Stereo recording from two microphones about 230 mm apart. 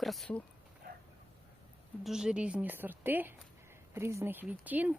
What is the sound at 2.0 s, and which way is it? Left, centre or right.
Speech, centre.